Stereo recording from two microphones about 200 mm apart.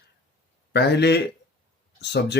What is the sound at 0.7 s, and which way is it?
Speech, 55° left (ahead or behind).